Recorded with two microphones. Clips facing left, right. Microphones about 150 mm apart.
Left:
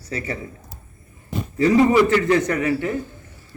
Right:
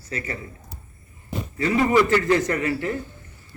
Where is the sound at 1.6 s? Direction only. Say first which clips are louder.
Left 4 dB; 25° left (ahead or behind).